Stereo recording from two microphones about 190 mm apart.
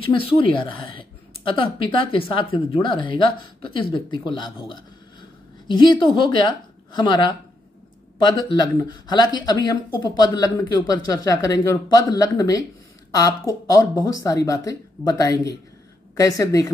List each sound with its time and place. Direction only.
0.0 s speech: 25° left (ahead or behind)
5.7 s speech: 25° left (ahead or behind)